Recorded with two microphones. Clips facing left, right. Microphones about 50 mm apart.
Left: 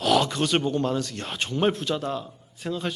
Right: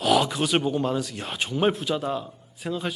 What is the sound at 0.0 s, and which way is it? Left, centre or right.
A man's voice, centre.